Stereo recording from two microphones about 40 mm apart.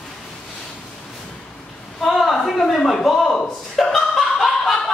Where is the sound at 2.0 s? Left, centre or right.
Centre.